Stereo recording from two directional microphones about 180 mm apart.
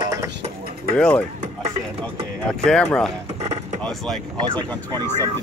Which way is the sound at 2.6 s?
5° left (ahead or behind).